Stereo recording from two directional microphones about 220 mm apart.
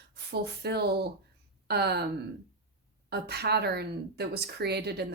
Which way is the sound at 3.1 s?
45° right (ahead or behind).